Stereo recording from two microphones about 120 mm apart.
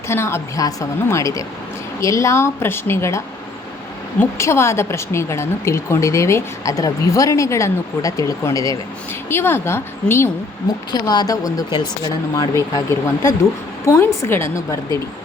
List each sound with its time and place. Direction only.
0.1 s a woman's voice: 20° left (ahead or behind)
4.4 s a woman's voice: 25° left (ahead or behind)
9.3 s a woman's voice: 20° left (ahead or behind)
10.9 s speech: 35° left (ahead or behind)
13.8 s a woman's voice: 25° left (ahead or behind)